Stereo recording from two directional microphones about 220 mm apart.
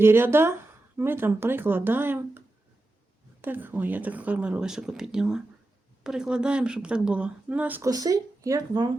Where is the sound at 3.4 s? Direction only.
10° right (ahead or behind).